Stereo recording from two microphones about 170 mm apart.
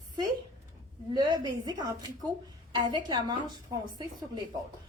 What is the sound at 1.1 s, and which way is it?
A woman's voice, 25° right (ahead or behind).